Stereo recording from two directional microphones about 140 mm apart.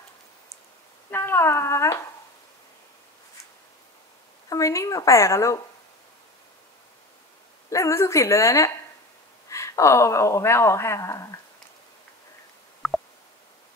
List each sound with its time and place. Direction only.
1.1 s speech: 15° left (ahead or behind)
4.5 s speech: 20° left (ahead or behind)
7.7 s speech: 20° left (ahead or behind)
12.8 s a sound: centre (ahead or behind)